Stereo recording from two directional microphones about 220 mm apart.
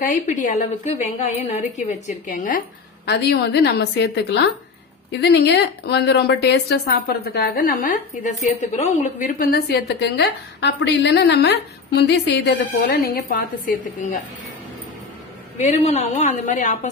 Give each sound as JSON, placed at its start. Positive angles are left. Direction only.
{"t": 0.0, "sound": "a woman's voice", "side_deg": 35}
{"t": 3.1, "sound": "a woman's voice", "side_deg": 50}
{"t": 15.7, "sound": "a woman's voice", "side_deg": 30}